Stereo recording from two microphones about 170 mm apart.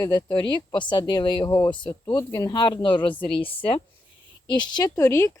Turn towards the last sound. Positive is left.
turn(degrees=15)  # may be behind; listen again after turning